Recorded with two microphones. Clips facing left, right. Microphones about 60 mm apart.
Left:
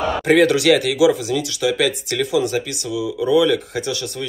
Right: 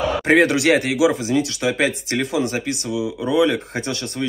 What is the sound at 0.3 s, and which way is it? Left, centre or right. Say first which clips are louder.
Speech: left 2 dB; right.